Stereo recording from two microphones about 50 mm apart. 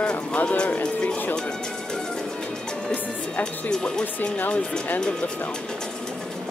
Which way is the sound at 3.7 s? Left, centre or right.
Centre.